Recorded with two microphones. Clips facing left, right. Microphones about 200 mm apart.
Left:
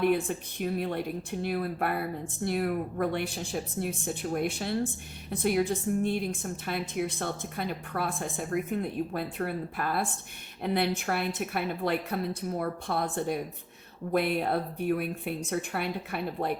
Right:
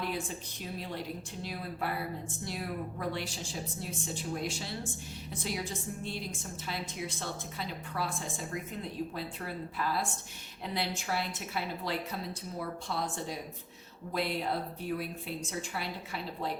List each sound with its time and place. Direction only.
0.0 s speech: 60° left (ahead or behind)